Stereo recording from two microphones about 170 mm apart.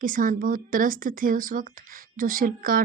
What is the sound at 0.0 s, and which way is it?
A woman's voice, 55° right (ahead or behind).